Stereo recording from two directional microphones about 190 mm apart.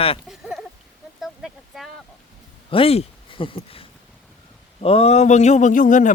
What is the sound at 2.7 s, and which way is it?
A man's voice, 30° left (ahead or behind).